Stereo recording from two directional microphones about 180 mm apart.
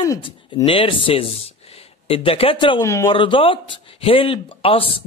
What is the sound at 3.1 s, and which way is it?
Speech, 30° left (ahead or behind).